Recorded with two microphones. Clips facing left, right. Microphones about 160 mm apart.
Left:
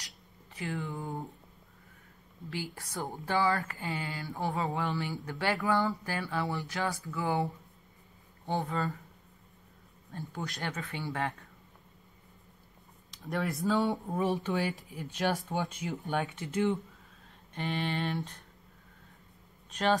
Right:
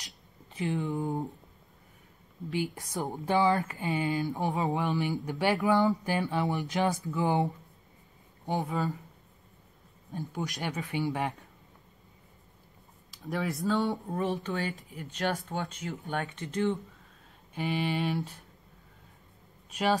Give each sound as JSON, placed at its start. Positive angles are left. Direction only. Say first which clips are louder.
{"t": 0.6, "sound": "speech", "louder": "right 6 dB", "side_deg": -20}
{"t": 2.5, "sound": "speech", "louder": "right 6 dB", "side_deg": -20}
{"t": 8.5, "sound": "speech", "louder": "right 2 dB", "side_deg": -15}
{"t": 10.1, "sound": "speech", "louder": "right 4 dB", "side_deg": -15}
{"t": 13.1, "sound": "speech", "louder": "right 1 dB", "side_deg": 0}
{"t": 17.6, "sound": "speech", "louder": "right 3 dB", "side_deg": -5}
{"t": 19.7, "sound": "speech", "louder": "right 1 dB", "side_deg": -10}